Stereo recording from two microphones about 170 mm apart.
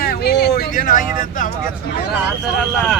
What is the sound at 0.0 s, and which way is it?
Vehicle, 65° left (ahead or behind).